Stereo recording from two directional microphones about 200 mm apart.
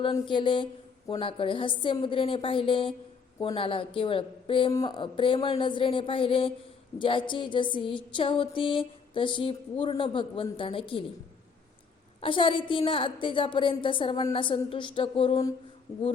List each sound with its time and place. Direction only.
0.0 s a woman's voice: 25° left (ahead or behind)
12.2 s a woman's voice: 25° left (ahead or behind)